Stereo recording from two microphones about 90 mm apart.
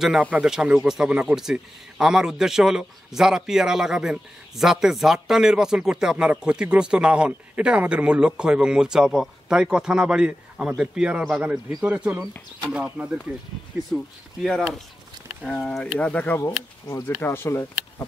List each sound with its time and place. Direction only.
0.2 s speech: 10° right (ahead or behind)
13.8 s speech: centre (ahead or behind); by 18.0 s 30° left (ahead or behind)